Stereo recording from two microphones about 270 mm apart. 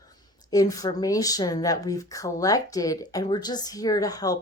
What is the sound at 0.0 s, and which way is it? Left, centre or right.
Speech, centre.